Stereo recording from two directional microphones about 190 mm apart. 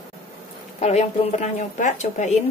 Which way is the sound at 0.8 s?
35° left (ahead or behind).